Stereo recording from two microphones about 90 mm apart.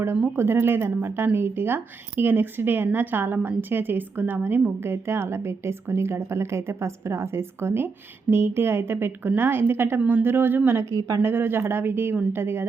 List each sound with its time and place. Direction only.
0.0 s speech: 25° right (ahead or behind)